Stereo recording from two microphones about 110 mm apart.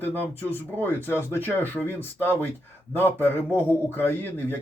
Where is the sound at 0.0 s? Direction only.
15° left (ahead or behind).